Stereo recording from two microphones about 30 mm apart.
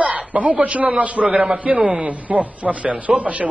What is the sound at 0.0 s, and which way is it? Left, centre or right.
A man's voice, right.